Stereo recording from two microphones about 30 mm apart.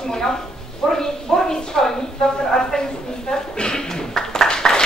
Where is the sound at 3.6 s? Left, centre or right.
Centre.